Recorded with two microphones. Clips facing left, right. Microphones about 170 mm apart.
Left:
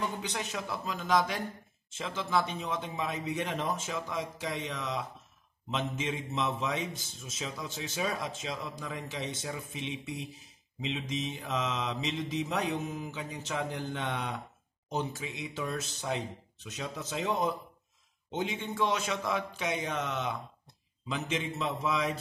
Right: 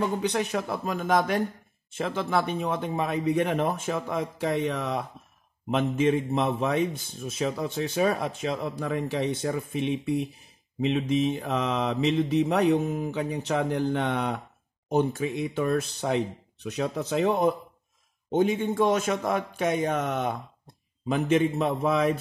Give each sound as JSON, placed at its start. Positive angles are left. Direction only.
{"t": 0.2, "sound": "a man's voice", "side_deg": -60}